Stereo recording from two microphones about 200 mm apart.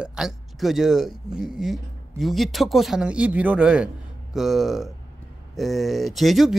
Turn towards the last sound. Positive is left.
turn(degrees=0)  # may be behind; listen again after turning